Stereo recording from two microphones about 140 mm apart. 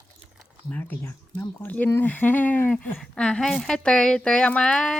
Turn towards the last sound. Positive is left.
turn(degrees=5)  # may be behind; listen again after turning